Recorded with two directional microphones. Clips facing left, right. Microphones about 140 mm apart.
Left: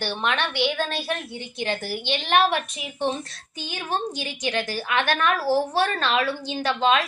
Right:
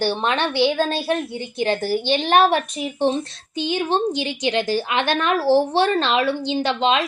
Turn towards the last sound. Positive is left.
turn(degrees=-25)  # may be behind; listen again after turning